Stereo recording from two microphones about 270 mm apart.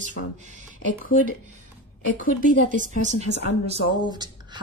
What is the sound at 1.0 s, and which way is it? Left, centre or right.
Speech, left.